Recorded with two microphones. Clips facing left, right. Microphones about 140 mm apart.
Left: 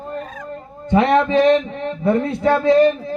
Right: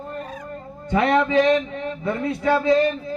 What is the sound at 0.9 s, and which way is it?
A man's voice, 20° left (ahead or behind).